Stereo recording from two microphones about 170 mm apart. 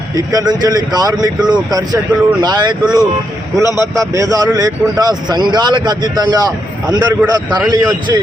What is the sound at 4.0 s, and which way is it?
Speech, 20° right (ahead or behind).